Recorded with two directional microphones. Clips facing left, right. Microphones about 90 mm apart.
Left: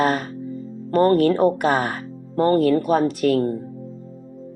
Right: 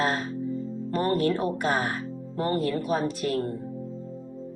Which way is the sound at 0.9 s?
60° left (ahead or behind).